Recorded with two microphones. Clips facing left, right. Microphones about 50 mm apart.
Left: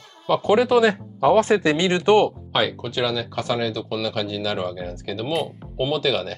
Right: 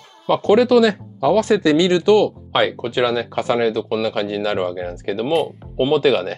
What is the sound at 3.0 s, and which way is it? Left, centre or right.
Speech, right.